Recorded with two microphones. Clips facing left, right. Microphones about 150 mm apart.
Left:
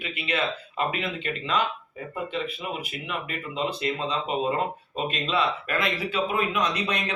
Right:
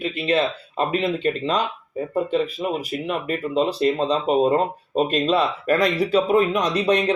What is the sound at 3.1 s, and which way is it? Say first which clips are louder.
Speech: right 10 dB; 40° right (ahead or behind).